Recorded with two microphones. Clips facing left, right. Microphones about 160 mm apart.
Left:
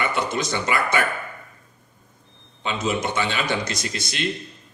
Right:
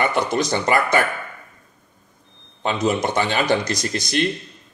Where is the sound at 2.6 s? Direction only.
50° right (ahead or behind).